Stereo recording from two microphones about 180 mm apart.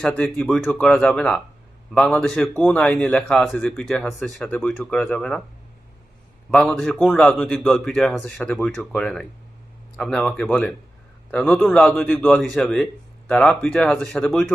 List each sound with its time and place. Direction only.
0.0 s a man's voice: 5° left (ahead or behind)
6.5 s a man's voice: 5° left (ahead or behind)